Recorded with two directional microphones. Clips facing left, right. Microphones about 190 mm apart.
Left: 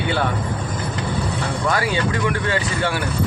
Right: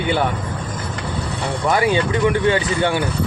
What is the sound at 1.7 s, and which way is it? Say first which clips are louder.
Speech: right 7 dB; 20° right (ahead or behind).